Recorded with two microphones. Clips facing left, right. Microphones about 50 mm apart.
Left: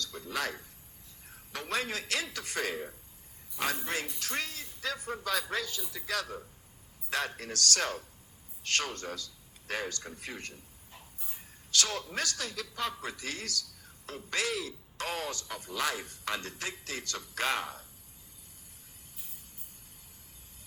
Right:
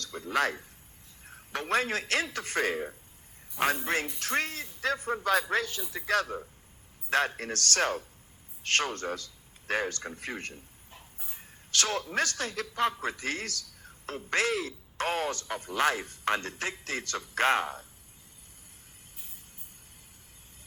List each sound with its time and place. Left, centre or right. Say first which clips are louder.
0.0 s a man's voice: right 6 dB; right
11.7 s a man's voice: right 3 dB; right